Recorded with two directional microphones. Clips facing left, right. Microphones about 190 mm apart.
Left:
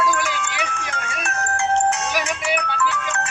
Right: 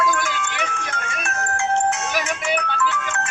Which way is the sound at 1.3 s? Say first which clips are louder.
Left 1 dB; 35° left (ahead or behind).